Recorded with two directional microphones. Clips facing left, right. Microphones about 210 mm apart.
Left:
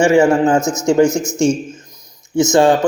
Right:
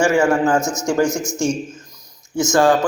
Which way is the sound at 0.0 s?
20° left (ahead or behind).